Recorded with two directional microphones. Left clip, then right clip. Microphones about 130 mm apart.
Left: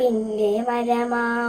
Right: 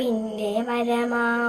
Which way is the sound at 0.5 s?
30° left (ahead or behind).